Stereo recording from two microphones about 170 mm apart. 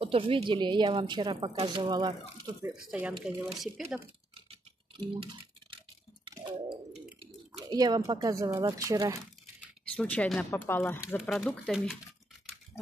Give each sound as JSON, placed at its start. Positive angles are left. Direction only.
{"t": 0.0, "sound": "a woman's voice", "side_deg": -30}
{"t": 3.0, "sound": "speech", "side_deg": -5}
{"t": 5.0, "sound": "typing", "side_deg": -30}
{"t": 6.9, "sound": "a sound", "side_deg": 0}
{"t": 7.7, "sound": "a woman's voice", "side_deg": -25}
{"t": 9.8, "sound": "speech", "side_deg": 5}
{"t": 11.1, "sound": "speech", "side_deg": 0}